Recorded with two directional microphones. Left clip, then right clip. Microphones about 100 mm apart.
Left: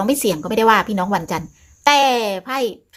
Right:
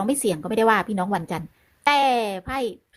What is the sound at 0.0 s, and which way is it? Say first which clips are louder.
A woman's voice: left 5 dB; 40° right (ahead or behind).